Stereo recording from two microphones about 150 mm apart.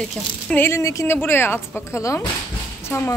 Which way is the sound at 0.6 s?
15° left (ahead or behind).